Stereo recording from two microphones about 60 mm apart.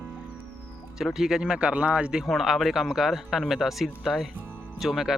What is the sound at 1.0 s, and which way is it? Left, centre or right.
Speech, centre.